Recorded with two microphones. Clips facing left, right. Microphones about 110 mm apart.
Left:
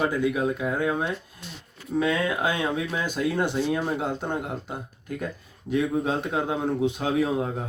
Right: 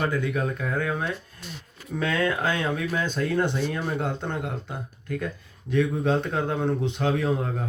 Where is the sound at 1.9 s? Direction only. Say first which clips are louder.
Left 1 dB; 5° left (ahead or behind).